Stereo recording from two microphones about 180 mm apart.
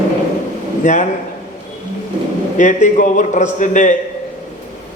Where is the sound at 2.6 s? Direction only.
45° left (ahead or behind).